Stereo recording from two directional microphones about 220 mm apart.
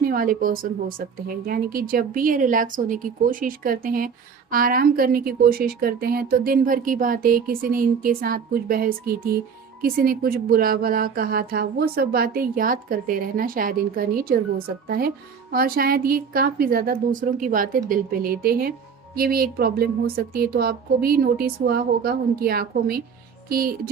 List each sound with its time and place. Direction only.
0.0 s a woman's voice: 40° right (ahead or behind)